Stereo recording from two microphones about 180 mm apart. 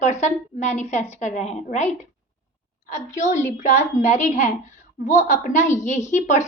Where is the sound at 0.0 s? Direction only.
40° left (ahead or behind).